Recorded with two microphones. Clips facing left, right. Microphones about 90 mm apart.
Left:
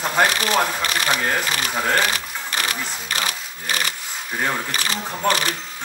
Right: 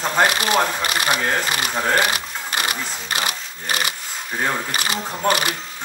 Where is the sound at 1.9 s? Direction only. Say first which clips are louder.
Right 2 dB; 15° right (ahead or behind).